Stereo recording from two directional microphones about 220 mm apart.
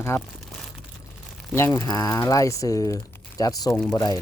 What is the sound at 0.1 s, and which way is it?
Speech, 10° left (ahead or behind).